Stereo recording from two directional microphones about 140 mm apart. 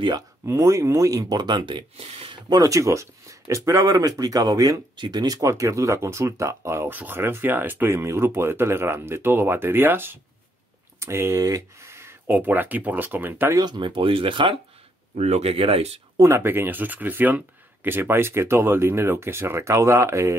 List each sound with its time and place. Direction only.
0.5 s speech: 20° right (ahead or behind); by 2.3 s 45° right (ahead or behind)
2.5 s speech: 25° right (ahead or behind)
13.6 s speech: 35° right (ahead or behind)
15.1 s speech: 50° right (ahead or behind)
16.2 s speech: 20° right (ahead or behind)